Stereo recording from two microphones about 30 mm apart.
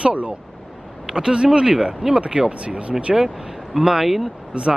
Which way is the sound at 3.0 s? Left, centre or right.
Right.